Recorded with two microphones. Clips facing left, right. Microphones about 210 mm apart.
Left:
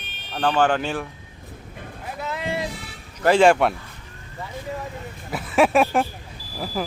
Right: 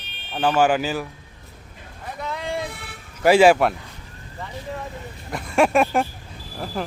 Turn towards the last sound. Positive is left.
turn(degrees=5)  # may be behind; listen again after turning